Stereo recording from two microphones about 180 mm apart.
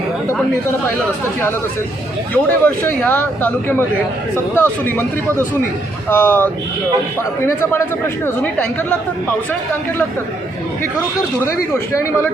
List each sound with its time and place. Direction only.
2.3 s speech: 10° left (ahead or behind)
11.4 s speech: 15° left (ahead or behind)